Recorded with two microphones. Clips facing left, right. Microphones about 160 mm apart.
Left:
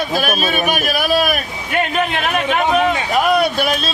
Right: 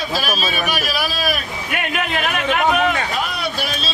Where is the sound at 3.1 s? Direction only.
55° left (ahead or behind).